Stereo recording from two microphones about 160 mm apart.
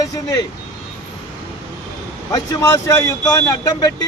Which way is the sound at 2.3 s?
20° left (ahead or behind).